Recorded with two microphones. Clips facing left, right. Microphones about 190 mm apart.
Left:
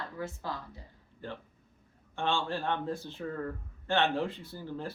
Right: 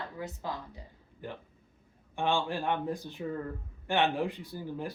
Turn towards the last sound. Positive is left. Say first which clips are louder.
# right 1 dB
turn(degrees=-15)  # may be behind; listen again after turning